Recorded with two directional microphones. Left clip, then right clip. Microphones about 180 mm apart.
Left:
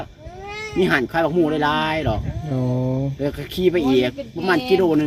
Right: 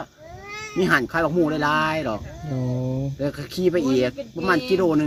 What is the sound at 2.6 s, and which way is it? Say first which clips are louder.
Speech: left 5 dB; centre (ahead or behind).